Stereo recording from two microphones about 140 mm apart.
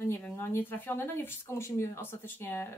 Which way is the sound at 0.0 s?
15° left (ahead or behind).